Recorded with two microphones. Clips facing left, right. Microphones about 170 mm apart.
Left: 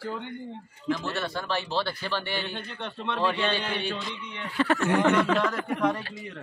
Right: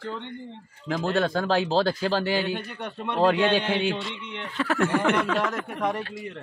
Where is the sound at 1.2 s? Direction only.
90° right.